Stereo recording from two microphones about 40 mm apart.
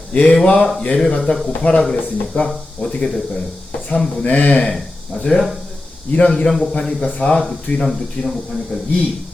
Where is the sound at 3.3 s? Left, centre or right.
Left.